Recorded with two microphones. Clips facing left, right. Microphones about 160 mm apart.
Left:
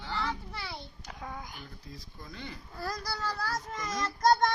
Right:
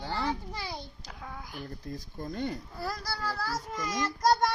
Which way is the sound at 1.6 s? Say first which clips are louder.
Right 8 dB; 50° right (ahead or behind).